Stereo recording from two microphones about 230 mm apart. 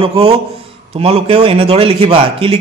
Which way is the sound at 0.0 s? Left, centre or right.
Right.